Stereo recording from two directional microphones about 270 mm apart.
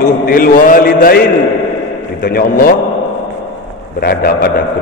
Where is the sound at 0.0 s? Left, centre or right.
Left.